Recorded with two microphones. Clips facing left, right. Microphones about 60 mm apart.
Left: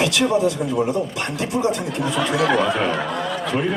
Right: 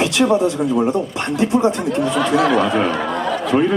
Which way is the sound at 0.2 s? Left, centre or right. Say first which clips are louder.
Right 8 dB; right.